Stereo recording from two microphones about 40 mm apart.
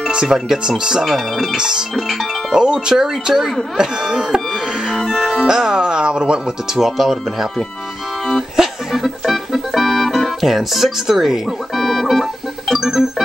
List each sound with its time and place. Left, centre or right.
0.1 s speech: centre
1.0 s speech: centre
1.6 s speech: centre
4.8 s music: centre; by 6.4 s right
6.7 s speech: centre
8.5 s organ: centre
10.4 s speech: centre
11.7 s organ: centre